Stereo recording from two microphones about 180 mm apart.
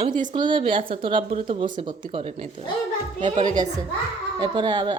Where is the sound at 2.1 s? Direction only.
35° right (ahead or behind).